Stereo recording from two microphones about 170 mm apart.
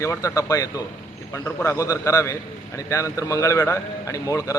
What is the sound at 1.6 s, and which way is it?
A man's voice, 20° left (ahead or behind).